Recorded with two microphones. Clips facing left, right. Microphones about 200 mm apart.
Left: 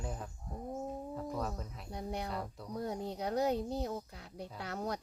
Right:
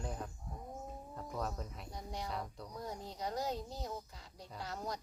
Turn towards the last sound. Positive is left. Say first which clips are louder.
# left 4 dB
turn(degrees=60)  # may be behind; listen again after turning